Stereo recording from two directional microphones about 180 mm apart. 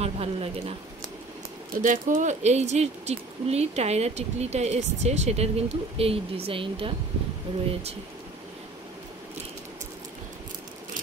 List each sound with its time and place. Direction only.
0.0 s speech: 35° right (ahead or behind)
1.8 s speech: 45° right (ahead or behind); by 6.9 s 30° right (ahead or behind)